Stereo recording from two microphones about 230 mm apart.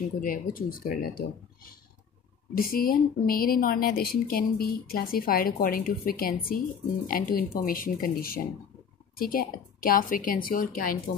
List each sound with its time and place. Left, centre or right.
0.2 s a woman's voice: left
2.5 s a woman's voice: left